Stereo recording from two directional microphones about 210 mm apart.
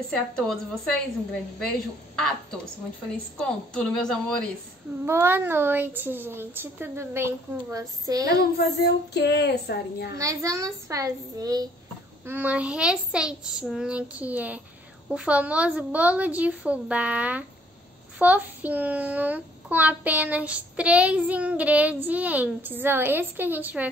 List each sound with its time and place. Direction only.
0.1 s child singing: centre (ahead or behind)
3.3 s child singing: 5° left (ahead or behind)
5.0 s a child's voice: 10° right (ahead or behind)
8.5 s a child's voice: 50° left (ahead or behind)
10.1 s a child's voice: 15° right (ahead or behind)
12.3 s child singing: 5° right (ahead or behind)
15.0 s a child's voice: 5° right (ahead or behind)